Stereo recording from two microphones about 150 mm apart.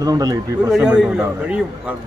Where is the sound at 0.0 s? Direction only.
25° right (ahead or behind).